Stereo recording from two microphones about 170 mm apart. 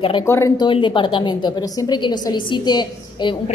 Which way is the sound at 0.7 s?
30° left (ahead or behind).